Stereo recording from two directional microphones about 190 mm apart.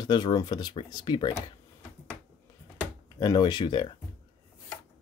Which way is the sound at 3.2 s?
20° left (ahead or behind).